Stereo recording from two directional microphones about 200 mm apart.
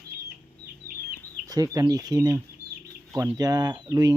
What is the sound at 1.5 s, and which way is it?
Speech, 20° right (ahead or behind).